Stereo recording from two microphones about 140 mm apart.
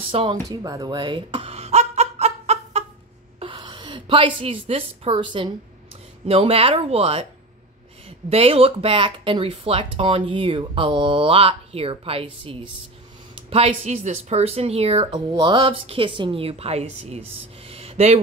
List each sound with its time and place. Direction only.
0.1 s speech: 40° right (ahead or behind)
0.5 s a sound: 25° right (ahead or behind); by 2.8 s 50° right (ahead or behind)
3.5 s a woman's voice: 35° right (ahead or behind)
8.3 s a woman's voice: 45° right (ahead or behind)
15.1 s a woman's voice: 35° right (ahead or behind)